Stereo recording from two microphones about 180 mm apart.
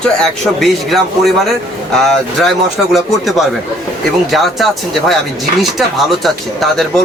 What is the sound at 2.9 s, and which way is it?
Speech, centre (ahead or behind).